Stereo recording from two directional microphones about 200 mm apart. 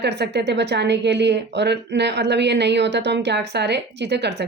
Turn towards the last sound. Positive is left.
turn(degrees=-55)  # may be behind; listen again after turning